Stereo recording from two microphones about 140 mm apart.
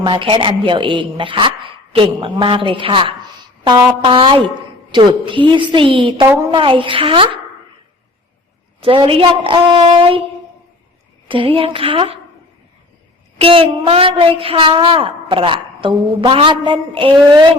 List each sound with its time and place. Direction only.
0.0 s a woman's voice: 35° right (ahead or behind)
8.8 s a woman's voice: 40° right (ahead or behind)
11.3 s a woman's voice: 40° right (ahead or behind)
13.4 s a woman's voice: 40° right (ahead or behind)